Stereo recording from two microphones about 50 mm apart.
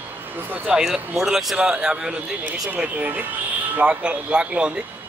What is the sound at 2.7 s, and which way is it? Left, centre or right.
Speech, right.